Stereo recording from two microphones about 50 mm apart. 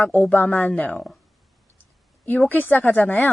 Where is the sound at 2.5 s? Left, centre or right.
Left.